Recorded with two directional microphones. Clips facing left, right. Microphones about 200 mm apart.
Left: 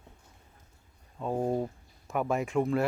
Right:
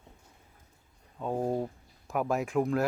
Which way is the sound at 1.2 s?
Centre (ahead or behind).